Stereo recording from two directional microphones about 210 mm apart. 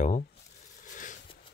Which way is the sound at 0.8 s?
40° left (ahead or behind).